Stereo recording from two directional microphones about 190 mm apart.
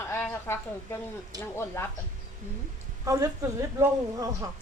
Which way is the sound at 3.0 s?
15° right (ahead or behind).